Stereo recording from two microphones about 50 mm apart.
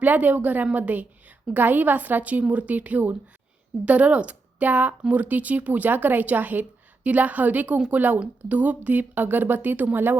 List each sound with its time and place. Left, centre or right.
0.0 s speech: right